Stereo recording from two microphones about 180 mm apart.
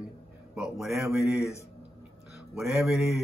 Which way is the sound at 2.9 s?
Centre (ahead or behind).